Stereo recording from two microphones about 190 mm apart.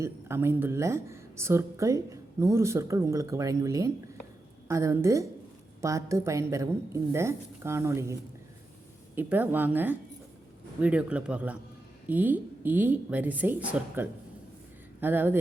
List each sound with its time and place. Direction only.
0.0 s speech: 15° right (ahead or behind)
9.1 s speech: 10° right (ahead or behind)